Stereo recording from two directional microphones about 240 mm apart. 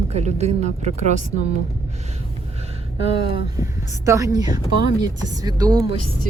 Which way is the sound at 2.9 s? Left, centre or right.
Right.